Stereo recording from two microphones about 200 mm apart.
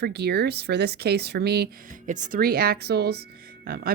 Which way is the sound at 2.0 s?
40° right (ahead or behind).